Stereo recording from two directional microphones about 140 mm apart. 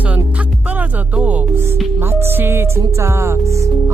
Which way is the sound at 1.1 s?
10° right (ahead or behind).